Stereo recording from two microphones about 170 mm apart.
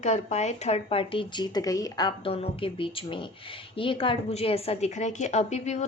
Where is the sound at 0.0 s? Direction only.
40° left (ahead or behind).